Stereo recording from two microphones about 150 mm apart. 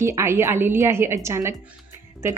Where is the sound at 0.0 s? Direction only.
20° right (ahead or behind).